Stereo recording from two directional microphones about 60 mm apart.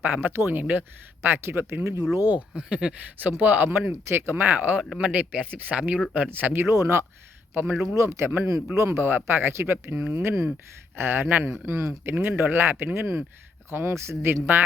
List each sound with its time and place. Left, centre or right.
0.0 s speech: right
2.5 s speech: centre
3.2 s speech: right
6.3 s speech: right
7.5 s speech: right
7.9 s speech: right
10.0 s speech: right
10.2 s speech: right
11.6 s speech: right
12.1 s speech: right
12.4 s speech: right